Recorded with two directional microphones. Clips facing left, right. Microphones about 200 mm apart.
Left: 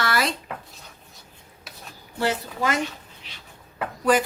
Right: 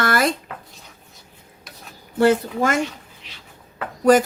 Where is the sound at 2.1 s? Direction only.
50° right (ahead or behind).